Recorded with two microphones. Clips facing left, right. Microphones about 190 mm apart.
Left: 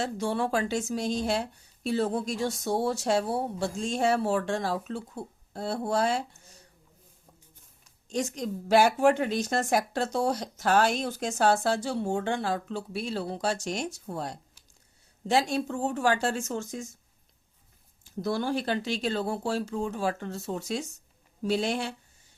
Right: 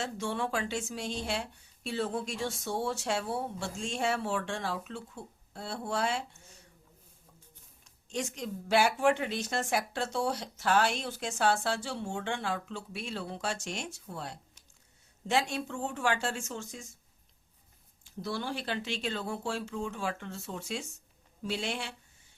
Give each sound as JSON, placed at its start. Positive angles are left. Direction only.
{"t": 0.0, "sound": "speech", "side_deg": 40}
{"t": 8.1, "sound": "speech", "side_deg": 40}
{"t": 18.2, "sound": "speech", "side_deg": 45}